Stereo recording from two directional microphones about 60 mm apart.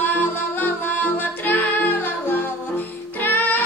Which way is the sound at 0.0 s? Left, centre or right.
Left.